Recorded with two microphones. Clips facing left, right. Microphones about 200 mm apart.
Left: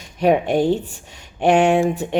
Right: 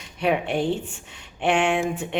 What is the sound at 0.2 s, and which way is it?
A woman's voice, 40° left (ahead or behind).